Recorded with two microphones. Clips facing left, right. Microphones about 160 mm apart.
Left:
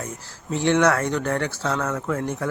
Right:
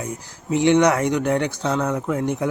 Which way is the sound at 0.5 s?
15° right (ahead or behind).